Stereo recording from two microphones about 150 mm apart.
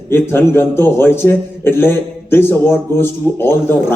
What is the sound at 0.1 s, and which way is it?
Speech, 15° left (ahead or behind).